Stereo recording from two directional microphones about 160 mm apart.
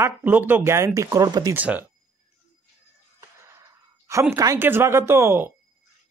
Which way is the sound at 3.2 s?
15° right (ahead or behind).